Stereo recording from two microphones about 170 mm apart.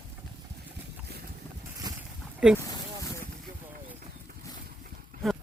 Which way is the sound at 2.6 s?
20° left (ahead or behind).